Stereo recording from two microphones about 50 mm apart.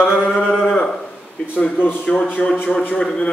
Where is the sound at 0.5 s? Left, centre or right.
Centre.